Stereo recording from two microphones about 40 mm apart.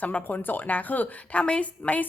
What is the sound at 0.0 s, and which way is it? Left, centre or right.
A woman's voice, left.